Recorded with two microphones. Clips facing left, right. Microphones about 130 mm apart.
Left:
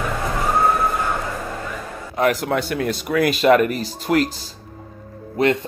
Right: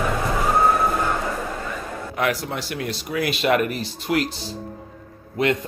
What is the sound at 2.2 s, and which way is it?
Speech, 50° left (ahead or behind).